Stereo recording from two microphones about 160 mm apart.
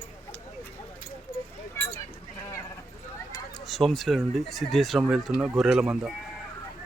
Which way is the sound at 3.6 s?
Centre (ahead or behind).